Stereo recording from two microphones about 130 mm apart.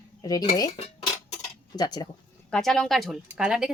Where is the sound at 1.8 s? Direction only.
30° left (ahead or behind).